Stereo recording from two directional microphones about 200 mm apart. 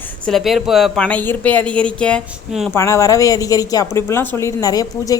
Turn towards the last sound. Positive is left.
turn(degrees=20)  # may be behind; listen again after turning